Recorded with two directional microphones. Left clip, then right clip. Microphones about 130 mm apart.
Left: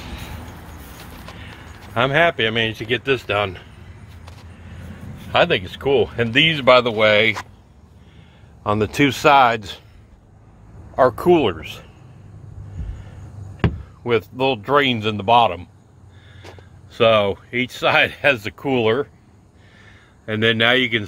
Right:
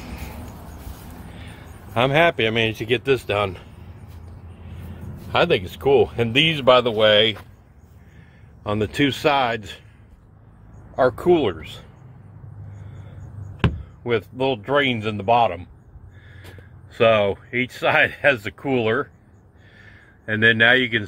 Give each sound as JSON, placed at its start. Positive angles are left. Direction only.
{"t": 2.0, "sound": "speech", "side_deg": -10}
{"t": 3.2, "sound": "speech", "side_deg": 0}
{"t": 5.3, "sound": "speech", "side_deg": 0}
{"t": 6.6, "sound": "speech", "side_deg": 15}
{"t": 8.6, "sound": "speech", "side_deg": 30}
{"t": 11.0, "sound": "speech", "side_deg": 30}
{"t": 14.0, "sound": "speech", "side_deg": 30}
{"t": 16.9, "sound": "speech", "side_deg": 25}
{"t": 19.8, "sound": "a sound", "side_deg": 25}